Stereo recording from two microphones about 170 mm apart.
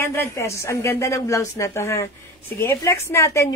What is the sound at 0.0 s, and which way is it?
A woman's voice, 15° left (ahead or behind).